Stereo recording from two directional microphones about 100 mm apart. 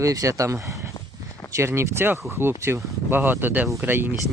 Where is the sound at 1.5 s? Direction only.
30° right (ahead or behind).